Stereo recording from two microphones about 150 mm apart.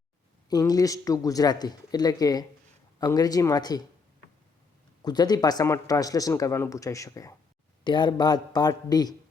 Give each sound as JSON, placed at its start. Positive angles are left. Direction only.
{"t": 0.5, "sound": "a man's voice", "side_deg": 25}
{"t": 5.0, "sound": "a man's voice", "side_deg": 25}